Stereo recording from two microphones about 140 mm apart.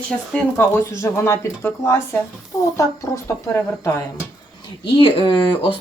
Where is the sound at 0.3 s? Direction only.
15° left (ahead or behind).